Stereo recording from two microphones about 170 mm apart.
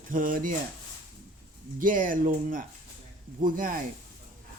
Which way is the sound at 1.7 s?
50° right (ahead or behind).